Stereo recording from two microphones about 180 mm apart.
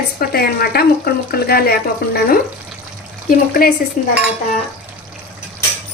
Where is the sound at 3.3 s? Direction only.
55° left (ahead or behind).